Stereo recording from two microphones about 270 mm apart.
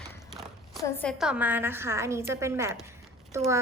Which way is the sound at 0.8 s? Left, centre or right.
Centre.